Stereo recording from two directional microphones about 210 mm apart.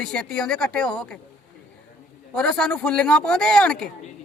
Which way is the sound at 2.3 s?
5° left (ahead or behind).